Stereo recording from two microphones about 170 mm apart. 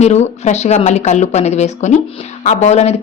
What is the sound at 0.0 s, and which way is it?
A woman's voice, 40° left (ahead or behind).